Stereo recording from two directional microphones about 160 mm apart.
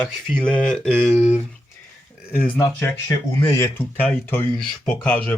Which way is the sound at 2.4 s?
10° left (ahead or behind).